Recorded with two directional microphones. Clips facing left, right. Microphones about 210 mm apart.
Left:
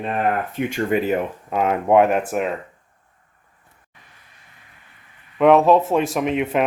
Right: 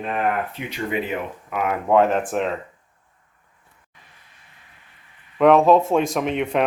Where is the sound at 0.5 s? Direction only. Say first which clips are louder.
Left 5 dB; 45° left (ahead or behind).